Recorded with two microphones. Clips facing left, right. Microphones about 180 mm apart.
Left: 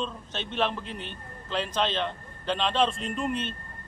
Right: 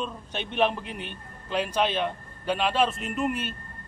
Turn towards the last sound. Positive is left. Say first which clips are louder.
# right 1 dB
turn(degrees=-5)  # may be behind; listen again after turning